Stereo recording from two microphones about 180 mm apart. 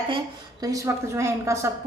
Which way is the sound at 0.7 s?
15° right (ahead or behind).